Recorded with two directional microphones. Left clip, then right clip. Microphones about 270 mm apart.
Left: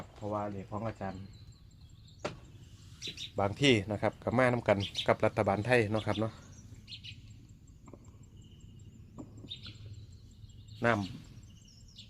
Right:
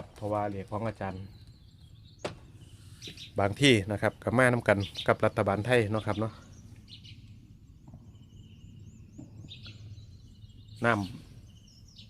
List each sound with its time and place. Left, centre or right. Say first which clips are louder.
0.2 s speech: right 5 dB; right
3.3 s speech: right 4 dB; right
10.8 s speech: right 2 dB; centre